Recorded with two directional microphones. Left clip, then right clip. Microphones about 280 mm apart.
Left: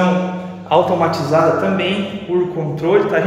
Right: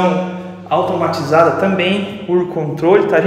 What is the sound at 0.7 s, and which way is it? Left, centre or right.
Speech, centre.